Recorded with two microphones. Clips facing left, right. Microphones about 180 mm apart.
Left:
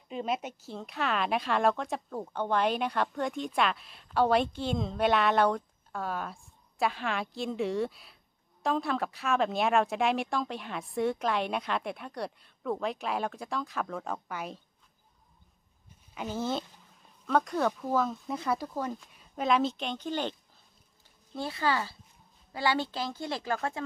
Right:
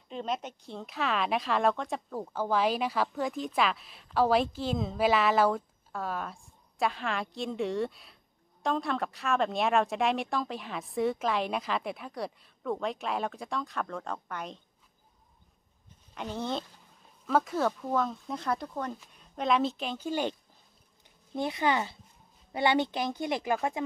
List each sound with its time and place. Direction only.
0.1 s a woman's voice: 5° left (ahead or behind)
16.2 s a woman's voice: 5° left (ahead or behind); by 23.8 s 15° right (ahead or behind)